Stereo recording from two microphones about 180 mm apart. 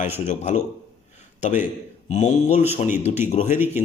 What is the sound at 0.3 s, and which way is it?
A man's voice, 40° left (ahead or behind).